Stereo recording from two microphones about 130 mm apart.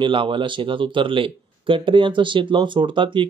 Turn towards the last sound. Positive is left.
turn(degrees=-40)  # may be behind; listen again after turning